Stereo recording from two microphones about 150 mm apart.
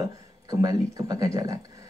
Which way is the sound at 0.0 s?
25° right (ahead or behind).